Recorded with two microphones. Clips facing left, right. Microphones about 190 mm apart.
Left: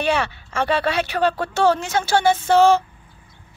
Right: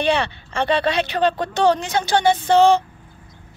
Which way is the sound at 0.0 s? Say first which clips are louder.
Right 1 dB; 5° left (ahead or behind).